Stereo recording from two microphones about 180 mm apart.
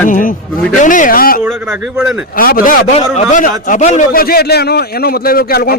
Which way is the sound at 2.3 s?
50° left (ahead or behind).